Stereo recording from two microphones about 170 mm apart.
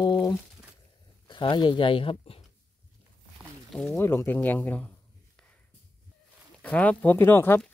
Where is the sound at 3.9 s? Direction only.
15° left (ahead or behind).